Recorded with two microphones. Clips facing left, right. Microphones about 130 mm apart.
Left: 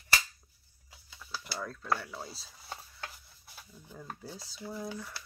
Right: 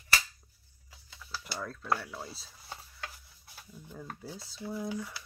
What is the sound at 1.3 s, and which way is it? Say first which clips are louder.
Speech: even; centre (ahead or behind).